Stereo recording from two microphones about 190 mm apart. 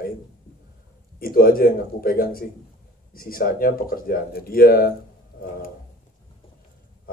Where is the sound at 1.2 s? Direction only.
50° left (ahead or behind).